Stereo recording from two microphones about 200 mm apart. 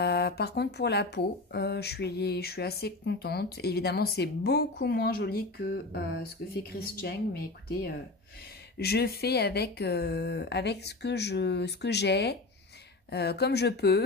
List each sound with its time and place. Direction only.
0.0 s speech: 55° left (ahead or behind)
8.7 s speech: 50° left (ahead or behind)